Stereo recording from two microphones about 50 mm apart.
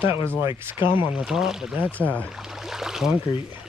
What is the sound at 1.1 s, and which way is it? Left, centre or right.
Speech, centre.